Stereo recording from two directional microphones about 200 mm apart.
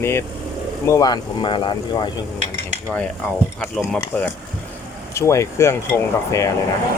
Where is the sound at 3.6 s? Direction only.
5° left (ahead or behind).